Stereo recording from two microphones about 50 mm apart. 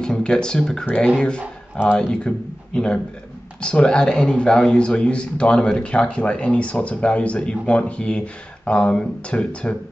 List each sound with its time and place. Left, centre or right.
0.0 s speech: centre
0.8 s a man's voice: left